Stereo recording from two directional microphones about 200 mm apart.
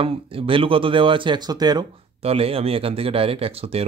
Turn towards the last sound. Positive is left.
turn(degrees=-30)  # may be behind; listen again after turning